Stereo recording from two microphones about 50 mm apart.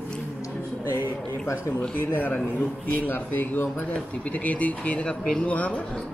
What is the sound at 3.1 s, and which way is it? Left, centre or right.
Speech, left.